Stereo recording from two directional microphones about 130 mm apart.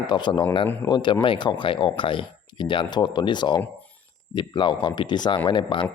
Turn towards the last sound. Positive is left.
turn(degrees=40)  # may be behind; listen again after turning